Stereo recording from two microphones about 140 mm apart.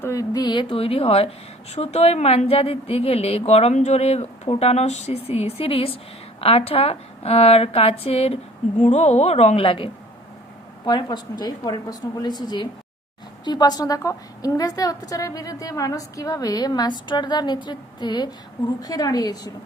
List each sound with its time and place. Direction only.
0.0 s a woman's voice: 25° left (ahead or behind)